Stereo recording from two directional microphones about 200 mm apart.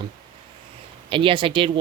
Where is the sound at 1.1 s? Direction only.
25° right (ahead or behind).